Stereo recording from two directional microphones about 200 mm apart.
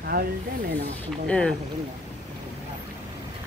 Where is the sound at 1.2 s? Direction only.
5° left (ahead or behind).